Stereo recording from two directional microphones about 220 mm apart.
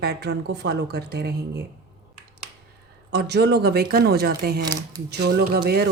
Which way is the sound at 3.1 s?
50° right (ahead or behind).